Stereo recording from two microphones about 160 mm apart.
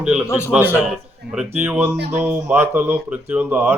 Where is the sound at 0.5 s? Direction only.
10° right (ahead or behind).